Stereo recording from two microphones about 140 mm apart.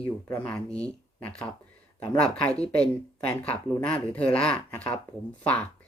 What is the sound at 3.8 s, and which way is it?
Speech, 10° left (ahead or behind).